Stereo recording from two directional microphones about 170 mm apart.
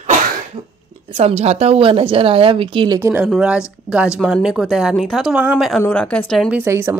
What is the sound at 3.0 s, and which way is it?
A woman's voice, 15° right (ahead or behind).